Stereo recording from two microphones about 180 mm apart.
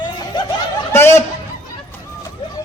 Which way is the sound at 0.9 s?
15° left (ahead or behind).